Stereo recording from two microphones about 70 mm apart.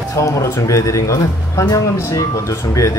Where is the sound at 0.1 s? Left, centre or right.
Left.